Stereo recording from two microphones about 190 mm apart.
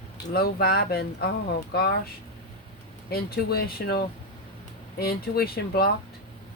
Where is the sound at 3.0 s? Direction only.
55° left (ahead or behind).